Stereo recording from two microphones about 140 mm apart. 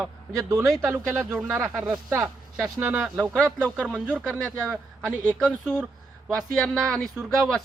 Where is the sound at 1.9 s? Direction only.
20° right (ahead or behind).